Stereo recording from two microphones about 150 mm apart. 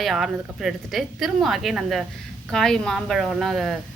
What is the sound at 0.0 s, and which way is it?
A woman's voice, centre (ahead or behind).